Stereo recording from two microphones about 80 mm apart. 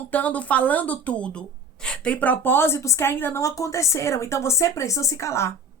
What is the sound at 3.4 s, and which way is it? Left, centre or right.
A woman's voice, left.